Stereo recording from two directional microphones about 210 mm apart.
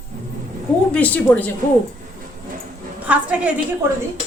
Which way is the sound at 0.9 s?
5° left (ahead or behind).